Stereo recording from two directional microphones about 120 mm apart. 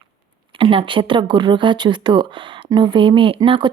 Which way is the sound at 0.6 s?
45° right (ahead or behind).